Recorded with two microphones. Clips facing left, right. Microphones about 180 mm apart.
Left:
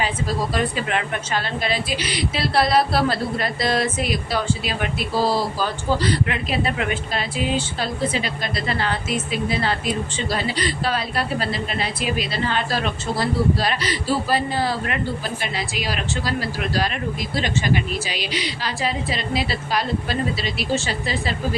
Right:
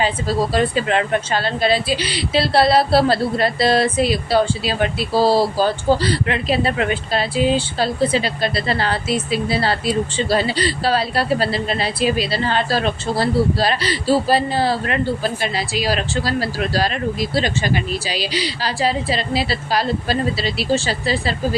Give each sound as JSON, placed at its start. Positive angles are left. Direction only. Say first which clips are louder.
{"t": 0.0, "sound": "speech", "louder": "right 4 dB", "side_deg": -30}